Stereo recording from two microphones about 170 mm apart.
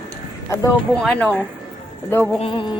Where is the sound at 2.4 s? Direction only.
30° left (ahead or behind).